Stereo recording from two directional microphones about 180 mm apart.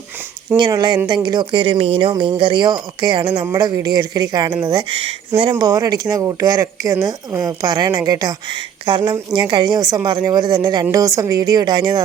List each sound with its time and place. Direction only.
0.5 s speech: 25° right (ahead or behind)